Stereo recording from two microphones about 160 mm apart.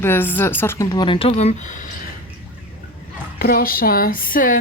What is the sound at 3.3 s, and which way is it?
Speech, 65° left (ahead or behind).